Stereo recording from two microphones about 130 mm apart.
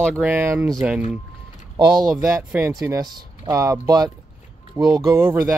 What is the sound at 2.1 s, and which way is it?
Speech, 15° right (ahead or behind).